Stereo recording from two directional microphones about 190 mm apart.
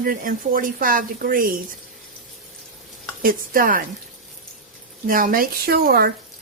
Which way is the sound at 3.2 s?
50° right (ahead or behind).